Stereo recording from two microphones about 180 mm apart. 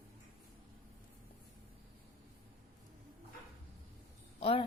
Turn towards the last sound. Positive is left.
turn(degrees=30)  # may be behind; listen again after turning